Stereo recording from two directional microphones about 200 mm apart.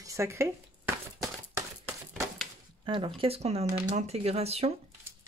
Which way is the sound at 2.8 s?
25° right (ahead or behind).